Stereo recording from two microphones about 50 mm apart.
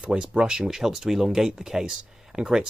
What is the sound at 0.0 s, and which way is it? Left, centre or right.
Speech, right.